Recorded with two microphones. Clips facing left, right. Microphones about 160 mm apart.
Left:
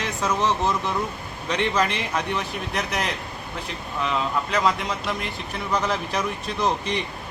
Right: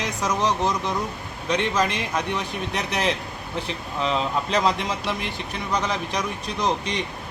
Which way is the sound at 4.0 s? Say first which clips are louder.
Right 1 dB; 25° right (ahead or behind).